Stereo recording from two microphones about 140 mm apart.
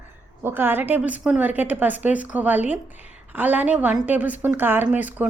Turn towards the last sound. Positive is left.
turn(degrees=-10)  # may be behind; listen again after turning